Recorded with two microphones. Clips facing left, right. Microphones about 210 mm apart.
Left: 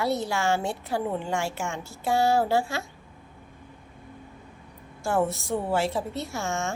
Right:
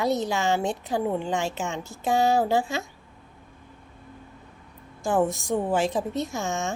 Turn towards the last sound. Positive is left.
turn(degrees=-15)  # may be behind; listen again after turning